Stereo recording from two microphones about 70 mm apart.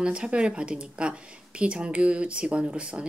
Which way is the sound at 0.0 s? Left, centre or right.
Centre.